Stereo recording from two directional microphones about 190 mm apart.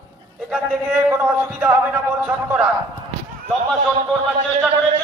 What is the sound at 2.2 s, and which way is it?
Speech, 10° right (ahead or behind).